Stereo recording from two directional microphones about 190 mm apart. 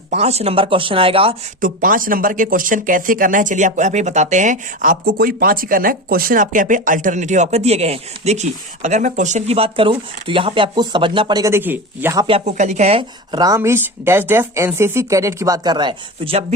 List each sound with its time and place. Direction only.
0.1 s speech: 35° right (ahead or behind)
1.6 s speech: 45° right (ahead or behind); by 12.2 s 10° right (ahead or behind)
12.3 s speech: 35° right (ahead or behind)